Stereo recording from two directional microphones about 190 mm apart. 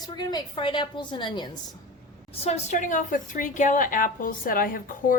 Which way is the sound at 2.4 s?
35° left (ahead or behind).